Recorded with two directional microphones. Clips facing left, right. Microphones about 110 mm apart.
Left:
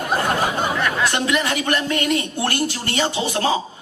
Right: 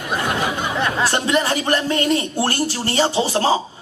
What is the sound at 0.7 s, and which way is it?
A man's voice, 30° right (ahead or behind).